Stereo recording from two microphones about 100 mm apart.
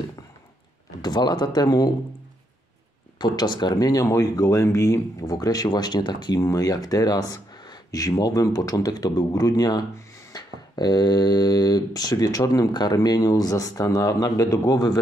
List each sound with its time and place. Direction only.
1.0 s speech: 45° left (ahead or behind)
3.2 s speech: 40° left (ahead or behind)